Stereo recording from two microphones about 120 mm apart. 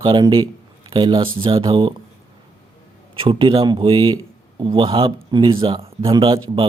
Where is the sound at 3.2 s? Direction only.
45° right (ahead or behind).